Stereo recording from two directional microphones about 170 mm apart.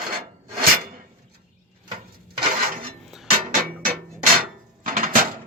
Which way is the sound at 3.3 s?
55° right (ahead or behind).